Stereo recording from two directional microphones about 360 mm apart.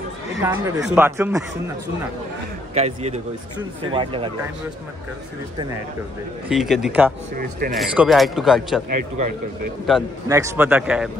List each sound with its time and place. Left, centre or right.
0.4 s speech: centre
2.7 s speech: centre
6.5 s a man's voice: centre
9.8 s a man's voice: centre